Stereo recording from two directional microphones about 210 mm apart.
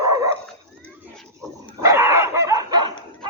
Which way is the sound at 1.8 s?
15° right (ahead or behind).